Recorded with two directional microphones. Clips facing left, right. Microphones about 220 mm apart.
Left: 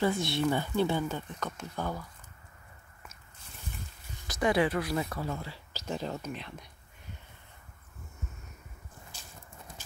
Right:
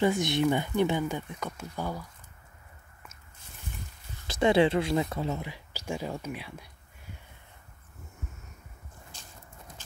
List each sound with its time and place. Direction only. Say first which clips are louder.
0.0 s speech: right 3 dB; 20° right (ahead or behind)
4.3 s speech: right 4 dB; 25° right (ahead or behind); by 6.7 s 10° right (ahead or behind)